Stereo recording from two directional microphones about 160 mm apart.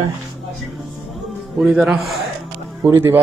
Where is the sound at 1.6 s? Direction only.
Centre (ahead or behind).